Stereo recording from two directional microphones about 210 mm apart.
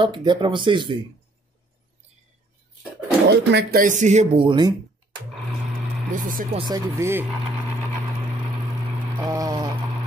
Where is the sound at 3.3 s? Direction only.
55° right (ahead or behind).